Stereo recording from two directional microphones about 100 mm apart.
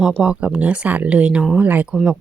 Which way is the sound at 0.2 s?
10° right (ahead or behind).